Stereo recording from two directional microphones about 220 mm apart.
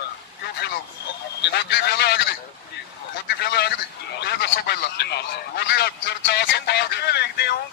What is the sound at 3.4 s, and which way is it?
A man's voice, 50° left (ahead or behind).